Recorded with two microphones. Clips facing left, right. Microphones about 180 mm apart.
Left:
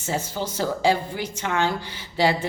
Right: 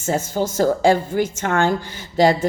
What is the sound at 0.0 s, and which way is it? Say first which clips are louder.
A woman's voice: right 6 dB; 45° right (ahead or behind).